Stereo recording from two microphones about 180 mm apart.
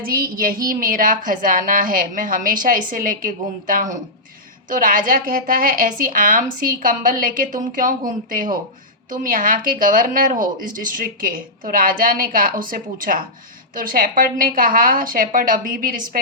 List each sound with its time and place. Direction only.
0.0 s speech: 55° right (ahead or behind)